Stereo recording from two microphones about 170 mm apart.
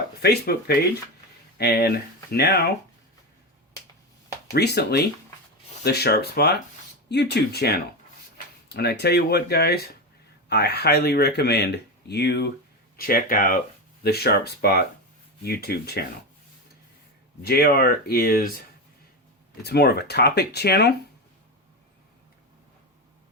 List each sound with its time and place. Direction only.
0.2 s speech: 70° left (ahead or behind)
1.5 s speech: 65° left (ahead or behind)
4.5 s speech: 75° left (ahead or behind)
7.1 s speech: 85° left
13.0 s speech: 60° left (ahead or behind)
14.0 s speech: 70° left (ahead or behind)
17.4 s speech: 65° left (ahead or behind)
19.6 s speech: 70° left (ahead or behind)